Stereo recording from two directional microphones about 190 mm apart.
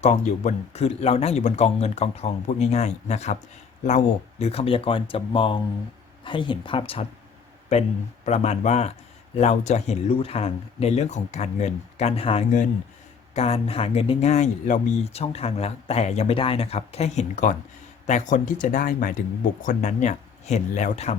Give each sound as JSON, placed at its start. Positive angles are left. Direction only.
{"t": 0.0, "sound": "a man's voice", "side_deg": 35}